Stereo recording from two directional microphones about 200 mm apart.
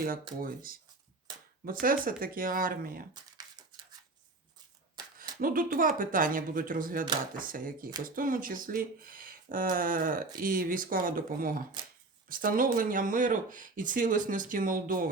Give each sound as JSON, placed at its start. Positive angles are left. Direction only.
{"t": 0.3, "sound": "speech", "side_deg": -45}
{"t": 5.4, "sound": "speech", "side_deg": -45}